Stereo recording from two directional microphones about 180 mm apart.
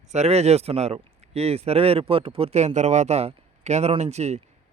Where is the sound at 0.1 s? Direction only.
40° right (ahead or behind).